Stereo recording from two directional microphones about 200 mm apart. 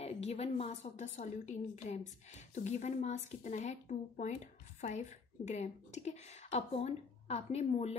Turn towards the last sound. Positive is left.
turn(degrees=35)  # may be behind; listen again after turning